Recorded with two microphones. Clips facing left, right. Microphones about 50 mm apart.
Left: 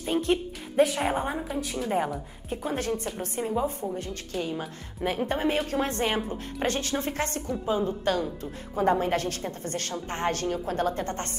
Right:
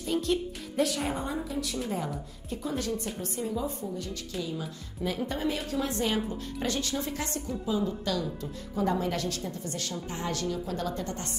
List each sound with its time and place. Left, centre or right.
0.0 s music: left
0.9 s a woman's voice: left
2.5 s a woman's voice: left